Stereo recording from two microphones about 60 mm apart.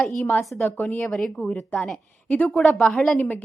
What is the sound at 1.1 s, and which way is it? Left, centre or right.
Speech, centre.